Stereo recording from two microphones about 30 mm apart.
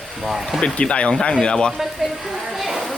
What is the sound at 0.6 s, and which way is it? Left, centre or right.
Speech, left.